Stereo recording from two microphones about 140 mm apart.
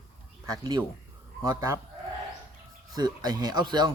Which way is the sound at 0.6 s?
30° right (ahead or behind).